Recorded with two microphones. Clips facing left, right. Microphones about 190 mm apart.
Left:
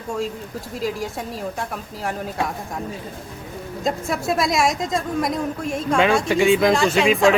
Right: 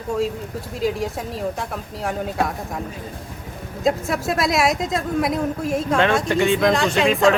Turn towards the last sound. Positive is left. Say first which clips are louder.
# left 1 dB
turn(degrees=0)  # may be behind; listen again after turning